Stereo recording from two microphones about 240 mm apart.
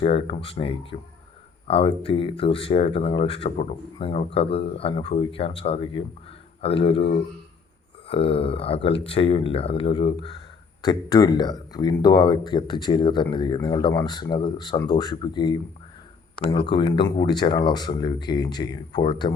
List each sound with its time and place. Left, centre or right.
0.0 s speech: left